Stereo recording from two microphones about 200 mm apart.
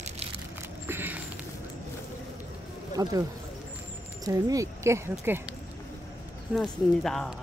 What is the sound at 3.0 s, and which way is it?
Speech, 20° right (ahead or behind).